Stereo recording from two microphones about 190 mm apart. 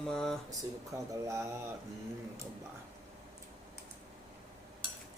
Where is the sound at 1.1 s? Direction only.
15° right (ahead or behind).